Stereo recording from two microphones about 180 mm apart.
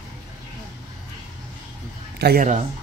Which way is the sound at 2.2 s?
60° right (ahead or behind).